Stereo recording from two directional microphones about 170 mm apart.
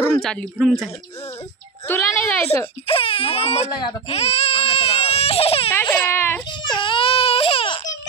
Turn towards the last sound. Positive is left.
turn(degrees=35)  # may be behind; listen again after turning